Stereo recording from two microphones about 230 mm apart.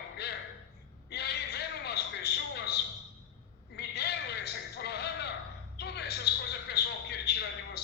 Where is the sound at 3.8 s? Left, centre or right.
Left.